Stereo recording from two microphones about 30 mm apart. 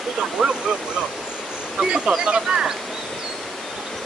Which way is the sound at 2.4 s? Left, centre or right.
Centre.